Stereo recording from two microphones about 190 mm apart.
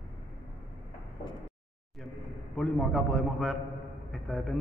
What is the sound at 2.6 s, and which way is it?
A man's voice, centre (ahead or behind).